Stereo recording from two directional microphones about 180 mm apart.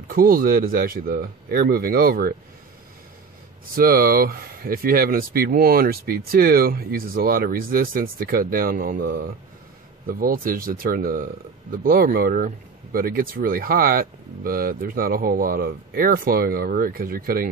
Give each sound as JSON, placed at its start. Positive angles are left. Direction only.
{"t": 0.1, "sound": "speech", "side_deg": -55}
{"t": 3.7, "sound": "speech", "side_deg": -55}